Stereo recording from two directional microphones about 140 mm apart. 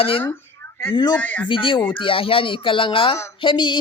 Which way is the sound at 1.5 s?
40° left (ahead or behind).